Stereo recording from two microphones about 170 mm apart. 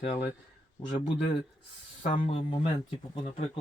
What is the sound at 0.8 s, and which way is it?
Speech, 30° left (ahead or behind).